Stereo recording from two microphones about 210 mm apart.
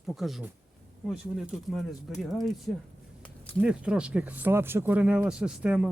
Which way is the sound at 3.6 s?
5° right (ahead or behind).